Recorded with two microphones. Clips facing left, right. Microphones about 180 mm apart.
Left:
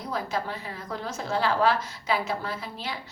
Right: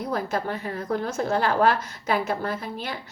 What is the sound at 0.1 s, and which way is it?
A woman's voice, 55° right (ahead or behind).